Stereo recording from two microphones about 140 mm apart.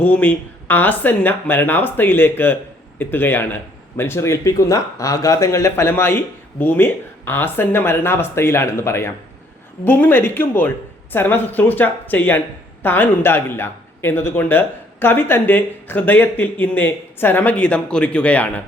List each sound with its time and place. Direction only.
0.0 s speech: 10° left (ahead or behind)